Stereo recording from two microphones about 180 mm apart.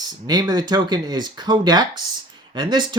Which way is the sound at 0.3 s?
25° right (ahead or behind).